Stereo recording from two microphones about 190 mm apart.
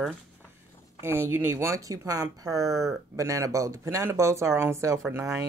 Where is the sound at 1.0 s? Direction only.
15° right (ahead or behind).